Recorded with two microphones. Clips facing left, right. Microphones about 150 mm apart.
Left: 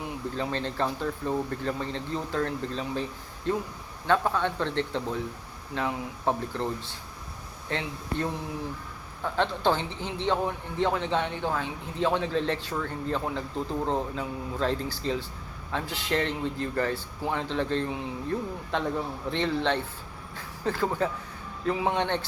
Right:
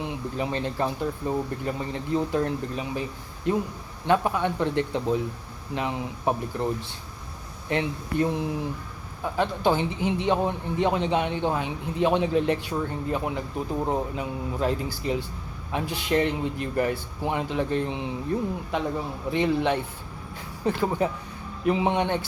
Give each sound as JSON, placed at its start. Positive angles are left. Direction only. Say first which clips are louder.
{"t": 0.0, "sound": "speech", "louder": "right 2 dB", "side_deg": -15}
{"t": 19.3, "sound": "speech", "louder": "right 4 dB", "side_deg": -15}